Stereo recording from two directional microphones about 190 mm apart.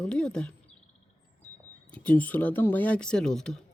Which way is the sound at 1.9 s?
5° left (ahead or behind).